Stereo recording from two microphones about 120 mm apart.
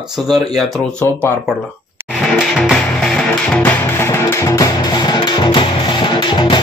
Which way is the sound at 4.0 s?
20° left (ahead or behind).